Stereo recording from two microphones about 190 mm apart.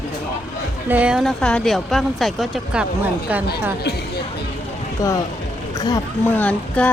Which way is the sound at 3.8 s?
60° left (ahead or behind).